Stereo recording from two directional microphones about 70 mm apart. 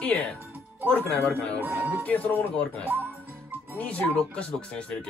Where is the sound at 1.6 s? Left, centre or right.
Right.